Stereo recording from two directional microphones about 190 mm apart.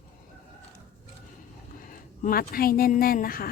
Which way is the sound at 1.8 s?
50° left (ahead or behind).